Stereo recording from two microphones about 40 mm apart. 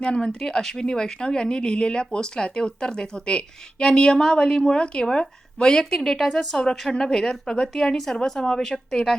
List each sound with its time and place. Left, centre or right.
0.1 s speech: centre
5.8 s a woman's voice: centre